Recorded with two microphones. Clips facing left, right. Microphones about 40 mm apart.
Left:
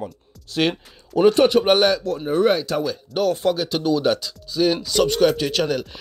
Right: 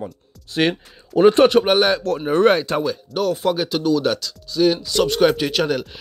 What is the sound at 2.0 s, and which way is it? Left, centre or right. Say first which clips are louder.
Speech: right 3 dB; right.